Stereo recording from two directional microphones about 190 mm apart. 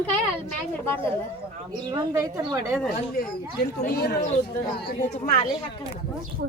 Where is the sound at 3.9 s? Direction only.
60° left (ahead or behind).